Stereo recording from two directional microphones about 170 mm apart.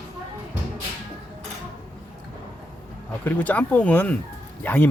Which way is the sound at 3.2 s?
10° left (ahead or behind).